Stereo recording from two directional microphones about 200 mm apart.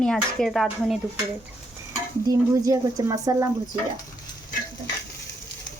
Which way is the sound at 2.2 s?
15° right (ahead or behind).